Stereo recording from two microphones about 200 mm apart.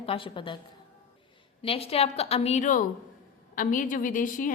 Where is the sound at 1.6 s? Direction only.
30° left (ahead or behind).